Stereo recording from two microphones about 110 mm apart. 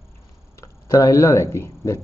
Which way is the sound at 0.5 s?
30° left (ahead or behind).